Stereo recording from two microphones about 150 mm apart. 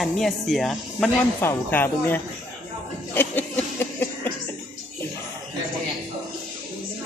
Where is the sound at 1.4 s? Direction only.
15° left (ahead or behind).